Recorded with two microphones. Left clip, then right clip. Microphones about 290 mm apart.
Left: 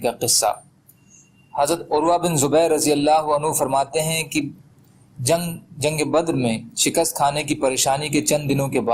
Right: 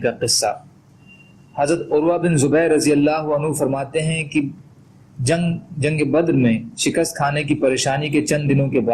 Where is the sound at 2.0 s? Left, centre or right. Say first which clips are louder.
Left 2 dB; centre.